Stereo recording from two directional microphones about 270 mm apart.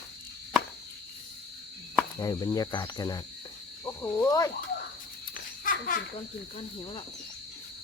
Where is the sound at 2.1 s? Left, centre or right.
Centre.